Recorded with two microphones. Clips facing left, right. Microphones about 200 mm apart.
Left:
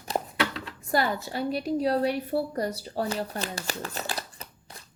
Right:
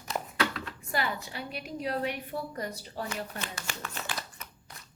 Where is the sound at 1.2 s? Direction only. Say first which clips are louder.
Left 11 dB; 40° left (ahead or behind).